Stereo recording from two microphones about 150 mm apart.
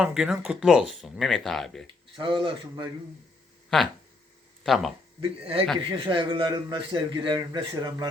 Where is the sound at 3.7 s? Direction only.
5° left (ahead or behind).